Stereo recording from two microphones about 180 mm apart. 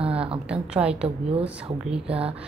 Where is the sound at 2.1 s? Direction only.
30° right (ahead or behind).